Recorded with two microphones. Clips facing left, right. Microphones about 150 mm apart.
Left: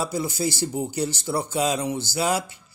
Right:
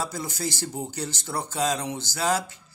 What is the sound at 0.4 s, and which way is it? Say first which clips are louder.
A man's voice: left 4 dB; 10° left (ahead or behind).